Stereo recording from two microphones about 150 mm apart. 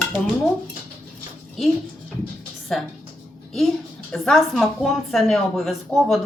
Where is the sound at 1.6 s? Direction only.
Centre (ahead or behind).